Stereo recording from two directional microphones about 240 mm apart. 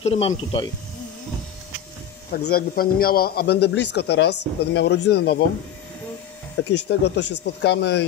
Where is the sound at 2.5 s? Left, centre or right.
Left.